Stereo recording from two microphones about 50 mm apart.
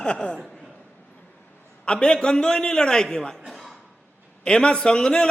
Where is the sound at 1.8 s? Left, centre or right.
Centre.